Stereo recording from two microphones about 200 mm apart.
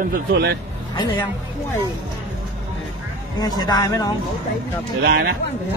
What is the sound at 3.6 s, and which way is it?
Speech, 20° left (ahead or behind).